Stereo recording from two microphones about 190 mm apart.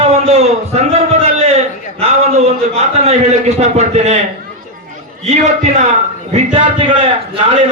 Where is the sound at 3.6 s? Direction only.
35° right (ahead or behind).